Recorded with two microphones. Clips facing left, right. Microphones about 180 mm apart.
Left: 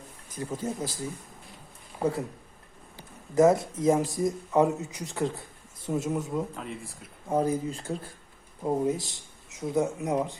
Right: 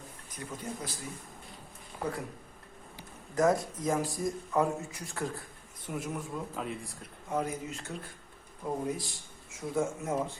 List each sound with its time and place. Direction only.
0.3 s speech: 25° left (ahead or behind)
2.0 s speech: 30° left (ahead or behind)
3.3 s speech: 25° left (ahead or behind)
6.6 s speech: centre (ahead or behind)
7.3 s speech: 30° left (ahead or behind)